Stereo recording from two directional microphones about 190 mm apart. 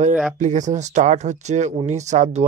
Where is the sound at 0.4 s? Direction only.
40° right (ahead or behind).